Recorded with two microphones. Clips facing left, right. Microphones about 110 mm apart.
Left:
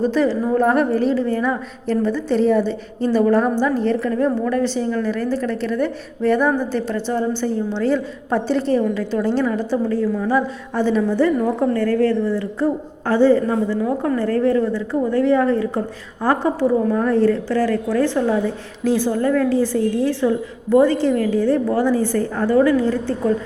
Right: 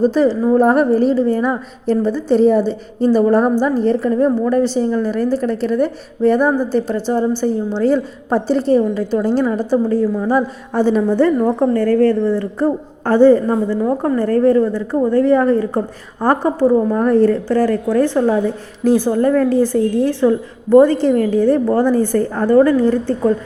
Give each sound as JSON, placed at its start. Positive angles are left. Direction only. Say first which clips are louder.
{"t": 0.1, "sound": "a woman's voice", "louder": "right 4 dB", "side_deg": -30}
{"t": 4.1, "sound": "a woman's voice", "louder": "right 4 dB", "side_deg": -25}
{"t": 11.3, "sound": "a woman's voice", "louder": "right 4 dB", "side_deg": -35}
{"t": 19.5, "sound": "a woman's voice", "louder": "right 3 dB", "side_deg": -50}